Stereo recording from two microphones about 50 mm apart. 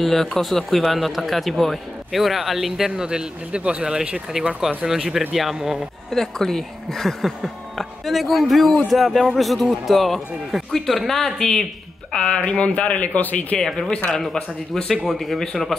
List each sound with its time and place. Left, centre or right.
0.0 s speech: centre
6.1 s speech: centre
12.1 s speech: centre; by 13.6 s left
13.6 s speech: centre